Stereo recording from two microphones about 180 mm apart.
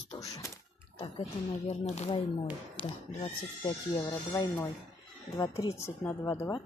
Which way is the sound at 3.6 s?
20° left (ahead or behind).